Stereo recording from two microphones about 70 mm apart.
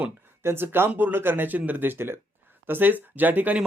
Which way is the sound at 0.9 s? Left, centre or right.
Right.